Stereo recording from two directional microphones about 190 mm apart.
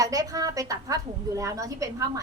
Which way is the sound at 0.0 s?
20° right (ahead or behind).